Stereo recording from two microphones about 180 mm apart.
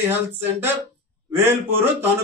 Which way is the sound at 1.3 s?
10° right (ahead or behind).